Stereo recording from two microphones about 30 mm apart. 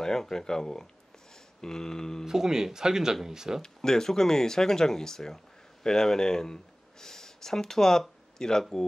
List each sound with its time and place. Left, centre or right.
0.0 s speech: centre
1.6 s mantra: centre
2.2 s speech: centre
3.6 s speech: centre
8.4 s mantra: centre